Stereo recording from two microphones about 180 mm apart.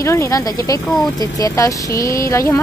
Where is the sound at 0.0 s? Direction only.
15° left (ahead or behind).